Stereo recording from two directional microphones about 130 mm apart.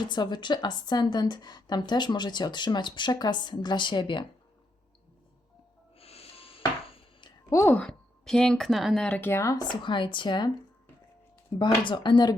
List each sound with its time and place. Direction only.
0.0 s a woman's voice: 35° left (ahead or behind)
6.0 s a sound: 50° left (ahead or behind)
7.5 s a woman's voice: 20° left (ahead or behind)
7.8 s speech: 5° left (ahead or behind); by 9.6 s 25° left (ahead or behind)
9.8 s a woman's voice: 40° left (ahead or behind)
11.8 s a woman's voice: 35° left (ahead or behind)